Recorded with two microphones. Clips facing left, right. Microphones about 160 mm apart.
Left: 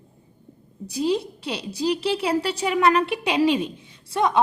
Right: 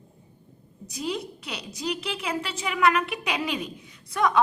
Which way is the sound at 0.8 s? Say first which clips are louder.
Left 8 dB; 30° left (ahead or behind).